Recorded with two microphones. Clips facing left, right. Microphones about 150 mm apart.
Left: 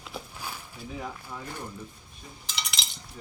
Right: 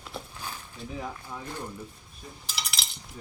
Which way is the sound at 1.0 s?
5° right (ahead or behind).